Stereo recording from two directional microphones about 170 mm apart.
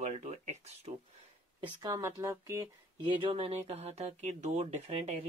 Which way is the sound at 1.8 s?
15° right (ahead or behind).